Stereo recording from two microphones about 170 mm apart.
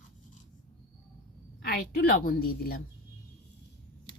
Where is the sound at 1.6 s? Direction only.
65° left (ahead or behind).